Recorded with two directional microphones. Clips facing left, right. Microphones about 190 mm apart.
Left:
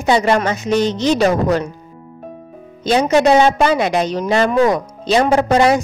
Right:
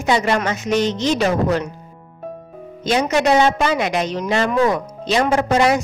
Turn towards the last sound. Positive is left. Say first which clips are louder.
# left 3 dB
turn(degrees=35)  # may be behind; listen again after turning